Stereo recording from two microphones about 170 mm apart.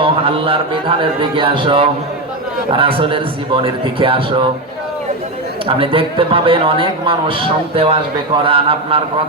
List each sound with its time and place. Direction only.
0.0 s a man's voice: 30° right (ahead or behind)
5.6 s a man's voice: 30° right (ahead or behind)